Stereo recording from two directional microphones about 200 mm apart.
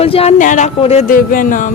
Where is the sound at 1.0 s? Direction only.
45° left (ahead or behind).